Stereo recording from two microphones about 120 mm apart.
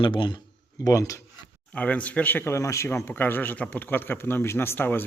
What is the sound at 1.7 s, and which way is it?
Speech, 10° left (ahead or behind).